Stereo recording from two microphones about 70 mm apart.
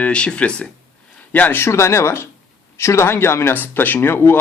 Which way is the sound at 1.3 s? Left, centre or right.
Left.